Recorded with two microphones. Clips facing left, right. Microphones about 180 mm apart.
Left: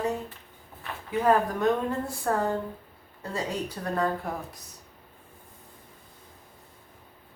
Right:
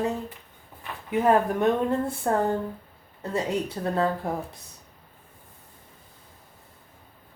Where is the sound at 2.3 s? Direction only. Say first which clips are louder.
Right 2 dB; 25° right (ahead or behind).